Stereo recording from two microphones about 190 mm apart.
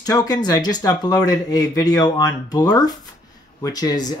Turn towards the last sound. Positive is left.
turn(degrees=20)  # may be behind; listen again after turning